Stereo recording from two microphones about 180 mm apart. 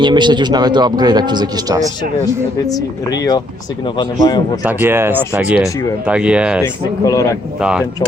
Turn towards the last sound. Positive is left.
turn(degrees=-5)  # may be behind; listen again after turning